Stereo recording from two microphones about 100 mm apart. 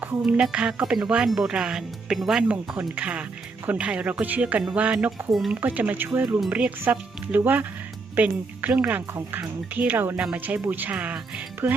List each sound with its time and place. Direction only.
0.0 s speech: 20° right (ahead or behind)
5.5 s speech: 15° right (ahead or behind)
11.6 s music: 20° right (ahead or behind)